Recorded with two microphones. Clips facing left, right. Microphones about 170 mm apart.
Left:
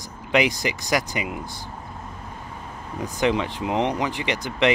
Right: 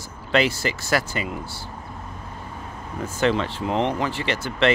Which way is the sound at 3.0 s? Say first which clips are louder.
Even; 15° left (ahead or behind).